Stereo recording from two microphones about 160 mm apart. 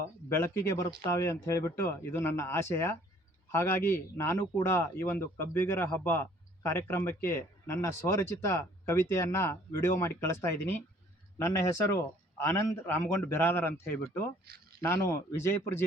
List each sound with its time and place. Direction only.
0.3 s a man's voice: 20° left (ahead or behind)